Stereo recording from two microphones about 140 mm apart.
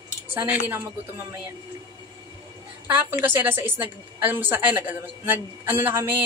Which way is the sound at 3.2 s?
15° right (ahead or behind).